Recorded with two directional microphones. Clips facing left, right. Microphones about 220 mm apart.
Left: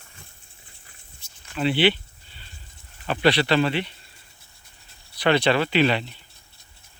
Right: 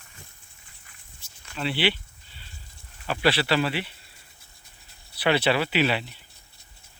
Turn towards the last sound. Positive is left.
turn(degrees=-10)  # may be behind; listen again after turning